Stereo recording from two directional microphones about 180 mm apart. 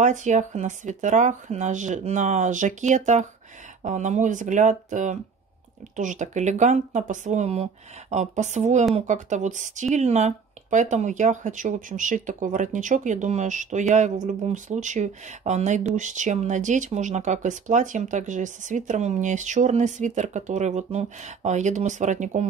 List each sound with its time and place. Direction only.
0.0 s speech: 40° right (ahead or behind)